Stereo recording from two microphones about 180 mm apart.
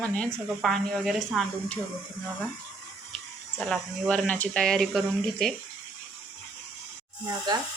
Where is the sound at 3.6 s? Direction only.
5° left (ahead or behind).